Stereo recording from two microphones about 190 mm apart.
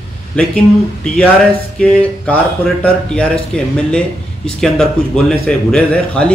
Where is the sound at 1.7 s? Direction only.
5° left (ahead or behind).